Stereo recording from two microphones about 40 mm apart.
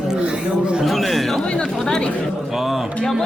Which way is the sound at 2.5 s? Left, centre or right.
Centre.